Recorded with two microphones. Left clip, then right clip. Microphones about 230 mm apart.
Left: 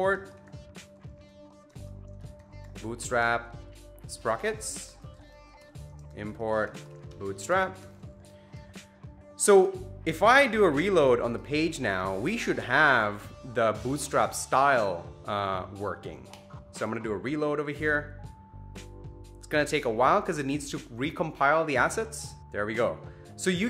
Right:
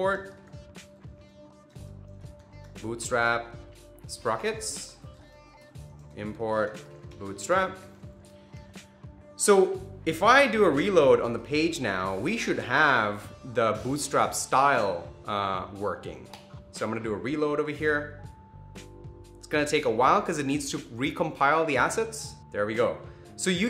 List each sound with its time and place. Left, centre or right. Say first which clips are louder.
2.9 s speech: right 1 dB; left
6.1 s speech: right 1 dB; left
9.4 s music: even; left
10.0 s speech: right 1 dB; left
19.5 s speech: right 2 dB; left